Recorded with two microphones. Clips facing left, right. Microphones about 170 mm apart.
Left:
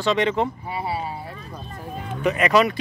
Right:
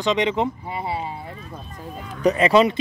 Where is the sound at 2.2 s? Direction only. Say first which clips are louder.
Right 3 dB; 30° right (ahead or behind).